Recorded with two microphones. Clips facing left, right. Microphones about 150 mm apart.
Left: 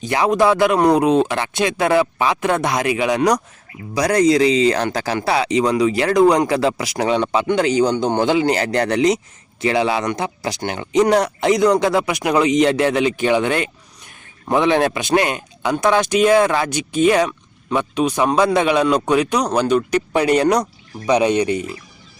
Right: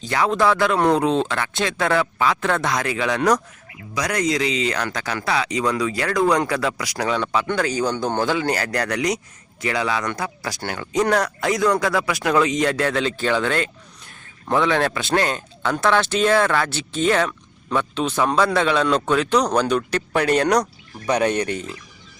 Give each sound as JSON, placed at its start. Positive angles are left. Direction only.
{"t": 0.0, "sound": "speech", "side_deg": 20}
{"t": 3.9, "sound": "speech", "side_deg": 30}